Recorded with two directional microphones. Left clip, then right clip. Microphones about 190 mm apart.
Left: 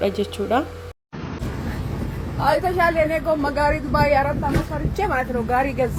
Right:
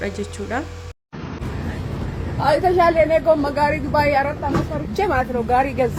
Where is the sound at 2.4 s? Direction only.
Centre (ahead or behind).